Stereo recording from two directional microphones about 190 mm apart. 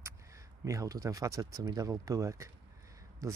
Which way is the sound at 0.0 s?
15° right (ahead or behind).